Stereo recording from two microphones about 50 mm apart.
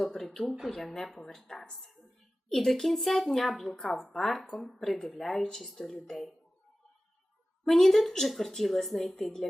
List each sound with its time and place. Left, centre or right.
0.0 s a woman's voice: centre
7.7 s a woman's voice: centre